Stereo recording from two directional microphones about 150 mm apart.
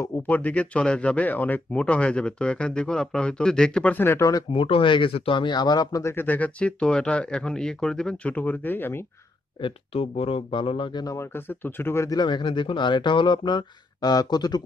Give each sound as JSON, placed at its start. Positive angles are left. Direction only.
{"t": 0.0, "sound": "speech", "side_deg": 10}
{"t": 4.5, "sound": "speech", "side_deg": 35}
{"t": 9.6, "sound": "speech", "side_deg": 35}
{"t": 11.1, "sound": "speech", "side_deg": 15}